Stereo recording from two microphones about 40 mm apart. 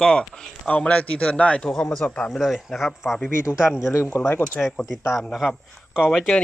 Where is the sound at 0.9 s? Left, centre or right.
Left.